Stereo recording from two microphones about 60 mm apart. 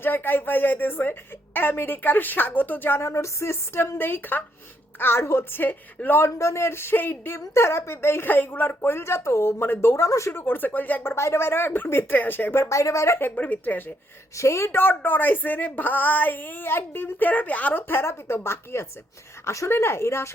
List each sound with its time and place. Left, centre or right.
0.0 s speech: left
3.0 s a woman's voice: left
6.2 s a woman's voice: left
10.1 s speech: left
10.3 s speech: left
11.1 s speech: left
12.6 s speech: left
13.1 s speech: left
14.3 s speech: left
17.8 s a woman's voice: left